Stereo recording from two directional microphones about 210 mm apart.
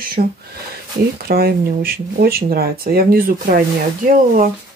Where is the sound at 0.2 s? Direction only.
40° right (ahead or behind).